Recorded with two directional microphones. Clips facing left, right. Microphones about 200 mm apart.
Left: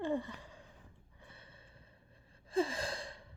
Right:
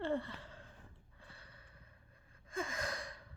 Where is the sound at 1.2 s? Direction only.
20° left (ahead or behind).